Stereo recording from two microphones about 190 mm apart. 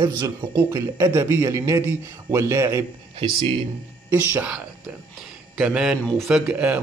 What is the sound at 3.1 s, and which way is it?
Speech, 30° right (ahead or behind).